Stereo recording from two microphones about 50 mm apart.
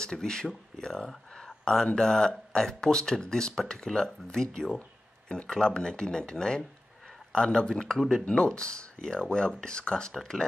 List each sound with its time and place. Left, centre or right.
0.0 s speech: centre